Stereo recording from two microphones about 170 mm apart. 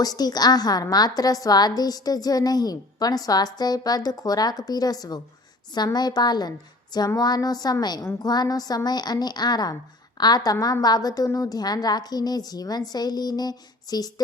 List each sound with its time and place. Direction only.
0.0 s a woman's voice: 25° left (ahead or behind)